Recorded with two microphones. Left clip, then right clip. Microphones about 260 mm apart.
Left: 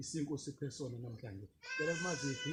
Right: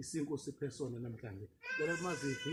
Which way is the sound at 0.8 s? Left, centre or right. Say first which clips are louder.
Right 3 dB; right.